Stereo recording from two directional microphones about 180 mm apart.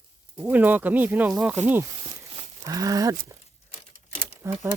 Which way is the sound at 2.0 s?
30° right (ahead or behind).